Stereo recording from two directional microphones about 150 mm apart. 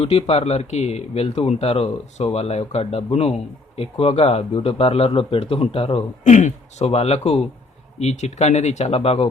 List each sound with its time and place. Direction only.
0.0 s speech: 40° left (ahead or behind)
6.2 s speech: 50° left (ahead or behind)